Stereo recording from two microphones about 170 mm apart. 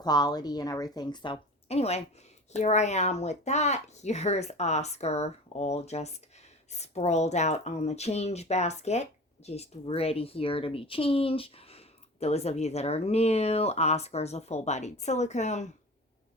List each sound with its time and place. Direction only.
0.0 s speech: 25° left (ahead or behind); by 15.7 s 45° left (ahead or behind)